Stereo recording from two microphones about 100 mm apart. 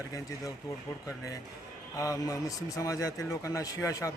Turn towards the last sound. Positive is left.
turn(degrees=30)  # may be behind; listen again after turning